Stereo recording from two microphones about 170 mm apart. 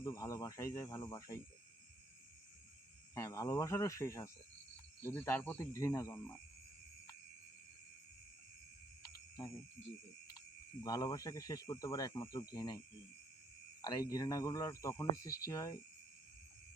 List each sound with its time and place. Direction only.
0.0 s speech: 20° left (ahead or behind)
3.2 s speech: 20° left (ahead or behind)
10.8 s speech: 20° left (ahead or behind)
13.8 s speech: 20° left (ahead or behind)